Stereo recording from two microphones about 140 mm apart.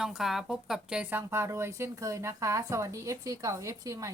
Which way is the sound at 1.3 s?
20° right (ahead or behind).